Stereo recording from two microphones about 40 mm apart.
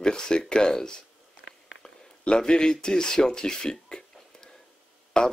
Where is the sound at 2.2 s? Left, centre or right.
Left.